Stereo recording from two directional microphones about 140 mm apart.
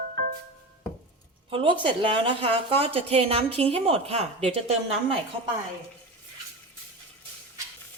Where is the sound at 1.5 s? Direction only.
35° right (ahead or behind).